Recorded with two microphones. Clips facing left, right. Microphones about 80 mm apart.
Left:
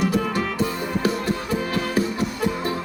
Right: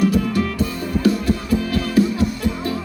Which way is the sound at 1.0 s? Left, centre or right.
Left.